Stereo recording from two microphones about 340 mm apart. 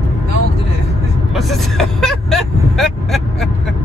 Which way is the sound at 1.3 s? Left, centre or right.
Centre.